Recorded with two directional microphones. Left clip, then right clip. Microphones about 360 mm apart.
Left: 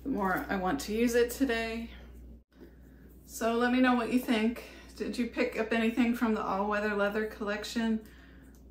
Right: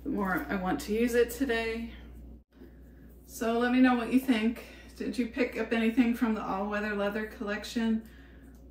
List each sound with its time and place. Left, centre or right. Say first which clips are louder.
0.1 s a woman's voice: left 1 dB; centre
3.3 s a woman's voice: right 1 dB; centre